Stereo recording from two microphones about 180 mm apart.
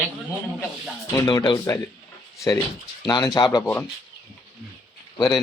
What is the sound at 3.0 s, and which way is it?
Speech, 25° left (ahead or behind).